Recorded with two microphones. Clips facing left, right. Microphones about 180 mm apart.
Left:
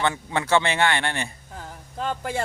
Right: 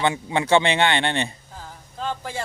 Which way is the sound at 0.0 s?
15° right (ahead or behind).